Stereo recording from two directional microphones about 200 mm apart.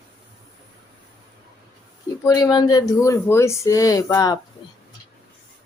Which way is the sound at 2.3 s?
20° left (ahead or behind).